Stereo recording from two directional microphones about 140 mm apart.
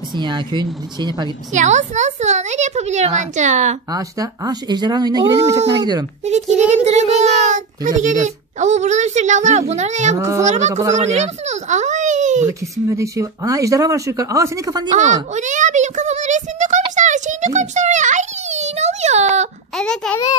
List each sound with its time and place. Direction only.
0.1 s speech: 35° right (ahead or behind)
1.5 s a child's voice: 60° right (ahead or behind)
3.9 s speech: 25° right (ahead or behind)
6.2 s a child's voice: 55° right (ahead or behind)
10.1 s speech: 20° right (ahead or behind)
10.4 s a child's voice: 55° right (ahead or behind)
10.7 s speech: 25° right (ahead or behind)
11.0 s speech: 55° right (ahead or behind)
12.4 s speech: 20° right (ahead or behind)
14.9 s a child's voice: 60° right (ahead or behind)
15.3 s a sound: 60° right (ahead or behind)
19.8 s a child's voice: 5° left (ahead or behind)